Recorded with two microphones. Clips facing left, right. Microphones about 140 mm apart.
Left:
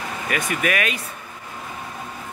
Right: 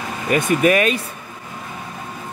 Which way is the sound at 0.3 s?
30° right (ahead or behind).